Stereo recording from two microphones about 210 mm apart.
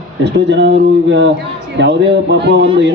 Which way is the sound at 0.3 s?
55° right (ahead or behind).